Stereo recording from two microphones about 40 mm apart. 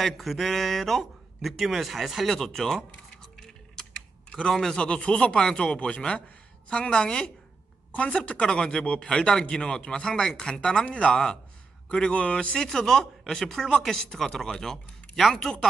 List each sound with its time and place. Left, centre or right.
0.0 s speech: centre
3.2 s music: centre
3.9 s typing: centre
4.7 s speech: left
12.1 s speech: left
12.6 s speech: centre